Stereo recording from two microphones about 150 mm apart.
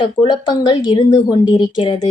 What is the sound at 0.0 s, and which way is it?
A woman's voice, 30° left (ahead or behind).